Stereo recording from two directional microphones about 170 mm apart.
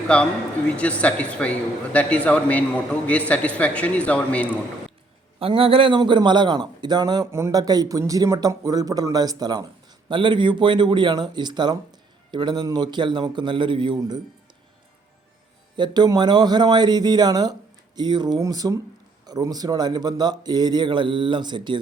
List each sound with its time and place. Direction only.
0.1 s a man's voice: 5° left (ahead or behind)
5.4 s a man's voice: 35° right (ahead or behind)
15.7 s a man's voice: 25° right (ahead or behind)